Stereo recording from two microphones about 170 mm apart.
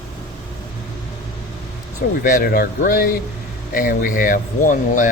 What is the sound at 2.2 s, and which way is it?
Speech, 55° left (ahead or behind).